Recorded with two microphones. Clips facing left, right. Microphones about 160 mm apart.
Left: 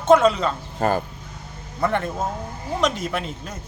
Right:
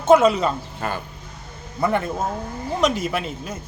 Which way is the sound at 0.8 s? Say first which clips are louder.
Left 7 dB; 40° left (ahead or behind).